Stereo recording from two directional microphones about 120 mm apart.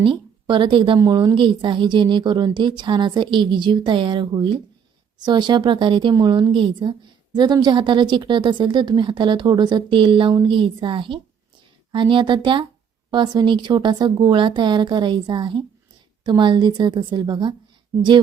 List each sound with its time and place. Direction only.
0.0 s a woman's voice: 45° right (ahead or behind)
0.9 s a woman's voice: 30° right (ahead or behind)
6.1 s a woman's voice: 30° right (ahead or behind)